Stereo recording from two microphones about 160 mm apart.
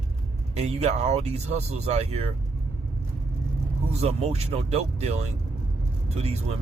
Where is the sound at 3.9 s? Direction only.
40° right (ahead or behind).